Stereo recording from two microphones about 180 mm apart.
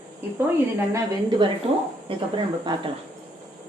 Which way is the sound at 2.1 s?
30° right (ahead or behind).